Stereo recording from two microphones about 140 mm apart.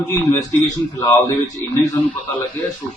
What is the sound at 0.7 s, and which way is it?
Speech, 25° left (ahead or behind).